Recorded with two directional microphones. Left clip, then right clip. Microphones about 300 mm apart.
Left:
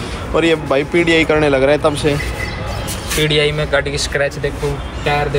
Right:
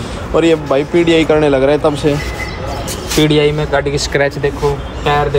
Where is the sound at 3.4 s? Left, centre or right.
Centre.